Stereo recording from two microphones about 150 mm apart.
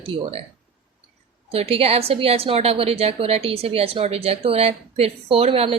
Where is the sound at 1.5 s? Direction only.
40° right (ahead or behind).